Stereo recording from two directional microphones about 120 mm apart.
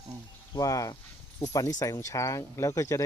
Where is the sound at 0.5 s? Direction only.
30° left (ahead or behind).